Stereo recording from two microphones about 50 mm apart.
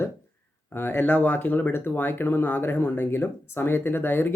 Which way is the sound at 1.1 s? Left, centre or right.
Left.